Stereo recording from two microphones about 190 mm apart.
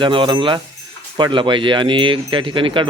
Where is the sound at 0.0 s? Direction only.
25° right (ahead or behind).